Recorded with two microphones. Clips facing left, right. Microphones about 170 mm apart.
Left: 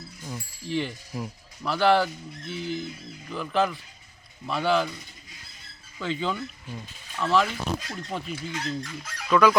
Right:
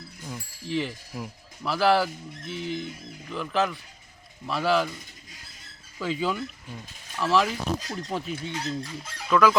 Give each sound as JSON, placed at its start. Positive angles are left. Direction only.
{"t": 0.3, "sound": "speech", "side_deg": 0}
{"t": 6.0, "sound": "speech", "side_deg": -5}
{"t": 8.5, "sound": "speech", "side_deg": -30}
{"t": 9.3, "sound": "speech", "side_deg": 0}